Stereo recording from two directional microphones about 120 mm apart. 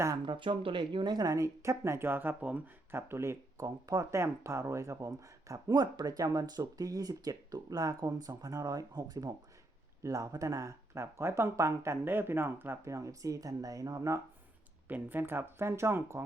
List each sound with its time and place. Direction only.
0.3 s speech: 45° right (ahead or behind); by 14.2 s 25° right (ahead or behind)
14.8 s speech: 15° right (ahead or behind)